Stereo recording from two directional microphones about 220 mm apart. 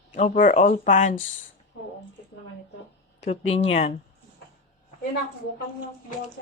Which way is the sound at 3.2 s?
30° left (ahead or behind).